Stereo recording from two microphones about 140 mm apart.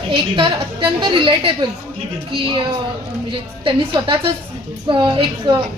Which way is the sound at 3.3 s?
35° right (ahead or behind).